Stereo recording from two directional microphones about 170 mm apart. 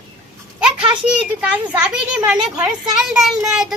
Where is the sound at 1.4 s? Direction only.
5° right (ahead or behind).